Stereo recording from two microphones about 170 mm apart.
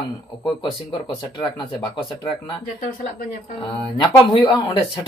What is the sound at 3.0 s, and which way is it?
Speech, 55° left (ahead or behind).